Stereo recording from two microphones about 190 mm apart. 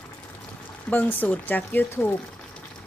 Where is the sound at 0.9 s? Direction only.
10° left (ahead or behind).